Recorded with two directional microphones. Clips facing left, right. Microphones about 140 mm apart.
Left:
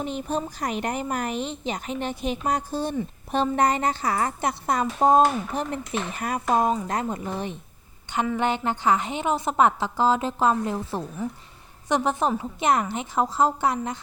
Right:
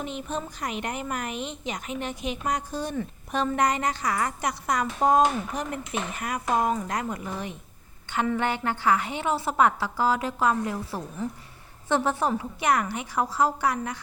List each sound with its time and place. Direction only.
0.0 s a woman's voice: 35° left (ahead or behind)